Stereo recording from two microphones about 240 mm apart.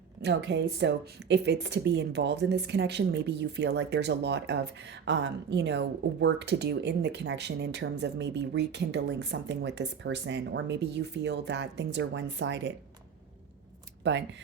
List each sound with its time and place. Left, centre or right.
0.2 s speech: right
14.0 s speech: right